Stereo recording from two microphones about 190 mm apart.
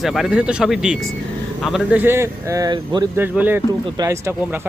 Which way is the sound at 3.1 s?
10° right (ahead or behind).